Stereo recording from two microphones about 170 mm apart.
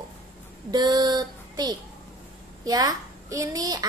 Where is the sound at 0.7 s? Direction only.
20° right (ahead or behind).